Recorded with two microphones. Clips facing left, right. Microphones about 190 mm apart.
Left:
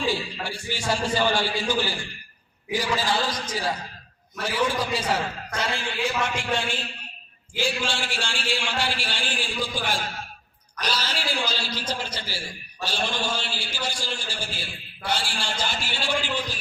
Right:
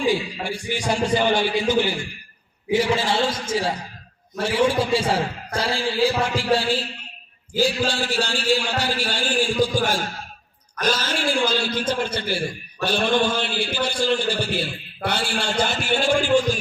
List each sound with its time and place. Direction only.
0.0 s a man's voice: 15° right (ahead or behind); by 16.1 s 55° right (ahead or behind)